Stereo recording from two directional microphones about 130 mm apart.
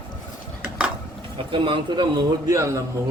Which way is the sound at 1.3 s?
40° right (ahead or behind).